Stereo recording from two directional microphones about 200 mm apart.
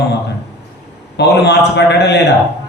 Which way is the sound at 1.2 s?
60° left (ahead or behind).